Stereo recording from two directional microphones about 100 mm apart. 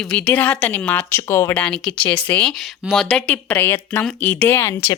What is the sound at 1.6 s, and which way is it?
Speech, 10° left (ahead or behind).